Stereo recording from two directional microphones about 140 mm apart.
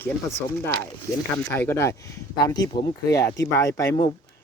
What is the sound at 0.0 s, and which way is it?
Speech, 20° left (ahead or behind).